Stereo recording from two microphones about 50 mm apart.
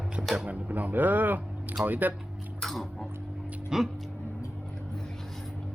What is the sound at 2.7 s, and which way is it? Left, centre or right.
Cutlery, centre.